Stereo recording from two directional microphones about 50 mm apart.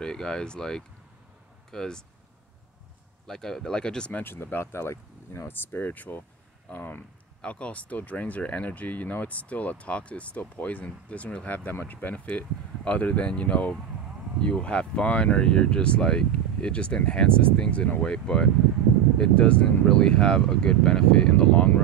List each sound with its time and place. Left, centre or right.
0.0 s speech: centre
3.3 s speech: centre
4.1 s speech: left
5.5 s speech: left
7.4 s speech: left